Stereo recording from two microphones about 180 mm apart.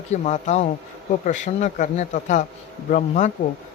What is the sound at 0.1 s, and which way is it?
Speech, 40° left (ahead or behind).